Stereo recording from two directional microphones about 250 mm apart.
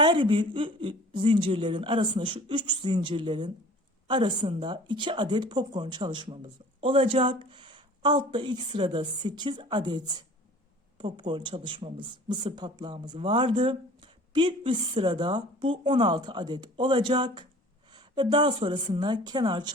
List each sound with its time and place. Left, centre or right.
0.0 s speech: centre